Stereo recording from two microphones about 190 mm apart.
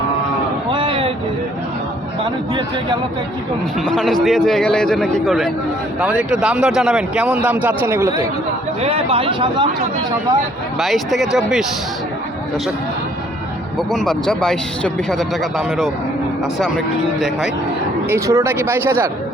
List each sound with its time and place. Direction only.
0.7 s a sound: 25° right (ahead or behind)
3.8 s speech: centre (ahead or behind)
8.8 s speech: 30° right (ahead or behind)
10.8 s speech: centre (ahead or behind)
13.7 s speech: centre (ahead or behind)
18.1 s speech: 15° right (ahead or behind)